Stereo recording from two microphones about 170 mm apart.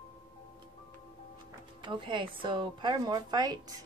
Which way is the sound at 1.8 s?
30° right (ahead or behind).